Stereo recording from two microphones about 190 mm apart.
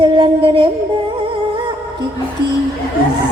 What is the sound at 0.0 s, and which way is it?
Music, 25° right (ahead or behind).